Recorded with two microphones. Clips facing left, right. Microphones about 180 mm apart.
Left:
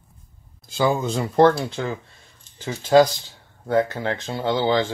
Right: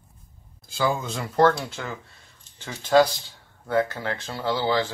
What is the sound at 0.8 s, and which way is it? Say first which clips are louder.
Speech: left 5 dB; 25° left (ahead or behind).